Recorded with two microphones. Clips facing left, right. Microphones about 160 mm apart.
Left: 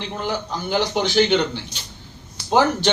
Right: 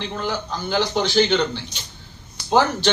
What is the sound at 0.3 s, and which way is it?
Speech, 15° left (ahead or behind).